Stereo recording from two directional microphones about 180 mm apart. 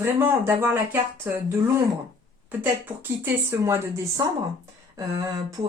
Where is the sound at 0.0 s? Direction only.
10° right (ahead or behind).